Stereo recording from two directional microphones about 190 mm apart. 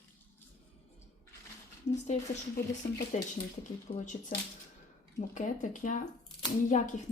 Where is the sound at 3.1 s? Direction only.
40° left (ahead or behind).